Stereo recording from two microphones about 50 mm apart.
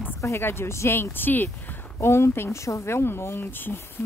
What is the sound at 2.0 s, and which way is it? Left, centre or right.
Speech, left.